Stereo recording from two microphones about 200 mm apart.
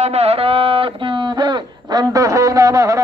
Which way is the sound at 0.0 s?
30° right (ahead or behind).